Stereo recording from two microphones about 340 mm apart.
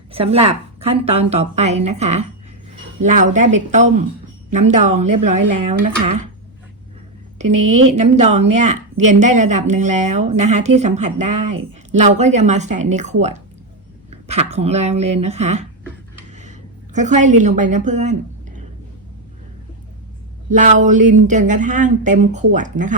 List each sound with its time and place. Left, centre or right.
0.1 s a woman's voice: centre
5.3 s speech: right
5.6 s speech: right
7.4 s a woman's voice: right
7.9 s speech: centre
11.3 s speech: right
11.9 s speech: centre
14.5 s speech: centre
16.4 s a sound: right
17.4 s a woman's voice: right
20.5 s speech: right